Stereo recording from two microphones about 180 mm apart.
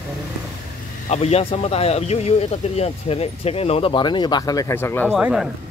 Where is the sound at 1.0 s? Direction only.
35° left (ahead or behind); by 5.2 s 10° left (ahead or behind).